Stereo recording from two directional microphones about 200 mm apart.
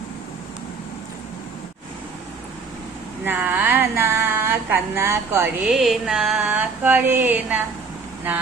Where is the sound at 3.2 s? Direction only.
10° right (ahead or behind).